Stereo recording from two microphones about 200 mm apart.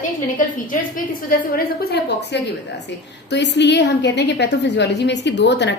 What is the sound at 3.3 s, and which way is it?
A woman's voice, 60° left (ahead or behind).